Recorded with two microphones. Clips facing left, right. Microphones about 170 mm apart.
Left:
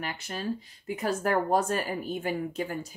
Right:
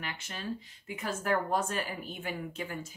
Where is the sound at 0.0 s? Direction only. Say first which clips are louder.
Left 6 dB; 40° left (ahead or behind).